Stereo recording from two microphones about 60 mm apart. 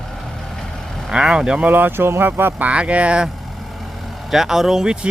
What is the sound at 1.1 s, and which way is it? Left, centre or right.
Speech, centre.